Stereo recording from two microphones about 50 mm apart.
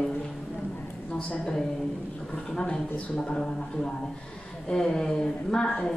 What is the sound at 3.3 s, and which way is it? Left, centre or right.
A man's voice, centre.